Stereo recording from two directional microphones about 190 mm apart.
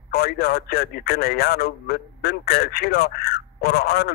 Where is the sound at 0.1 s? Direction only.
55° left (ahead or behind).